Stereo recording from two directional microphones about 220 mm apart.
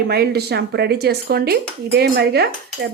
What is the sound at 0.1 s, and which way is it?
Speech, 45° right (ahead or behind).